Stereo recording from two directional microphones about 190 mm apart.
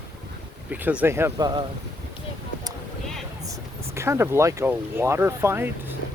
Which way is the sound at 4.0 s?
15° right (ahead or behind).